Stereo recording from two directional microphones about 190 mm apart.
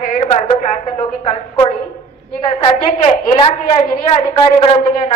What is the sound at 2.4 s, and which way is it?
A woman's voice, 25° left (ahead or behind).